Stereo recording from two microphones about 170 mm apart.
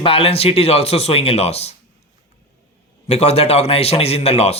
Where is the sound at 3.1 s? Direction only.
40° left (ahead or behind).